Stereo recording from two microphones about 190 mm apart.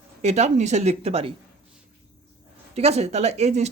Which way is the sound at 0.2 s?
35° right (ahead or behind).